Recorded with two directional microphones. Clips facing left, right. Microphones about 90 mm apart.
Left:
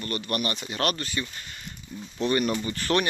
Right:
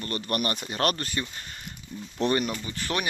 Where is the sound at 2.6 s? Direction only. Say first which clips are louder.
Left 5 dB; 10° right (ahead or behind).